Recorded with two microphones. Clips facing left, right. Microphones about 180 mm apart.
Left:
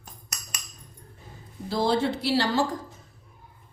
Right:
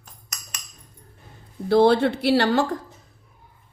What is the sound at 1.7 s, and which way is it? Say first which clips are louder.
Speech: right 8 dB; 65° right (ahead or behind).